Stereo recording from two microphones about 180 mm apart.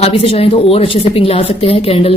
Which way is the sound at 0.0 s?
35° left (ahead or behind).